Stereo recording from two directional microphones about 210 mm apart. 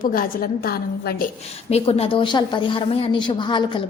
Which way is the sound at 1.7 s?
25° left (ahead or behind).